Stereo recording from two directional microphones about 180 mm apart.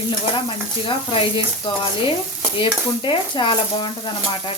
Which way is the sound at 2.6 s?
25° left (ahead or behind).